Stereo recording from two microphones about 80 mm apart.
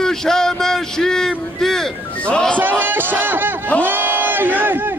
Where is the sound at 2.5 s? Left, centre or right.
Right.